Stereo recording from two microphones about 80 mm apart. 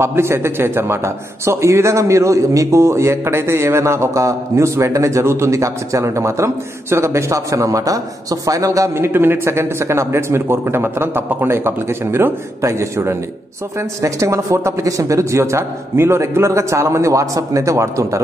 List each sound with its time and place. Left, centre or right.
0.0 s a man's voice: right